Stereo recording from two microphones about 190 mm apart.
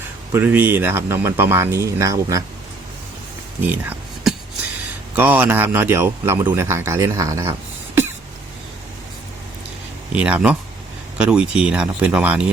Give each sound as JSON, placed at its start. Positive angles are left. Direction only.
{"t": 0.3, "sound": "speech", "side_deg": -10}
{"t": 3.6, "sound": "a sound", "side_deg": -5}
{"t": 5.1, "sound": "speech", "side_deg": -10}
{"t": 10.2, "sound": "speech", "side_deg": -5}